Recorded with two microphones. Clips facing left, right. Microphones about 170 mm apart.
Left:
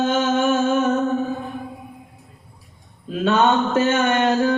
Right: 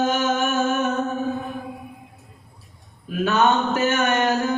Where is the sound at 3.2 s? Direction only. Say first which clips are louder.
Left 2 dB; 25° left (ahead or behind).